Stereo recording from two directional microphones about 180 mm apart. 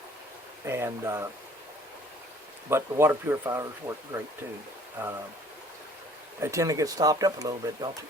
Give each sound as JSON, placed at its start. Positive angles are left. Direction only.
{"t": 0.6, "sound": "speech", "side_deg": -15}
{"t": 2.6, "sound": "speech", "side_deg": -15}
{"t": 6.4, "sound": "speech", "side_deg": -15}